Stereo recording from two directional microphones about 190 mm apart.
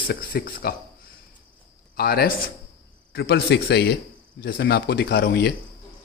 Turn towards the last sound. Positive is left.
turn(degrees=60)  # may be behind; listen again after turning